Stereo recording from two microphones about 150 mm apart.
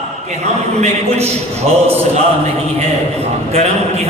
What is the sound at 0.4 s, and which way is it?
Speech, 45° right (ahead or behind).